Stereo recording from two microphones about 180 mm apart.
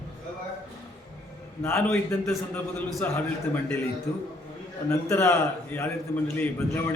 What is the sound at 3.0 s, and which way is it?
Speech, 10° left (ahead or behind).